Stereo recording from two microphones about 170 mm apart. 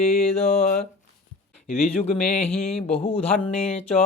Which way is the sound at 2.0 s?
40° left (ahead or behind).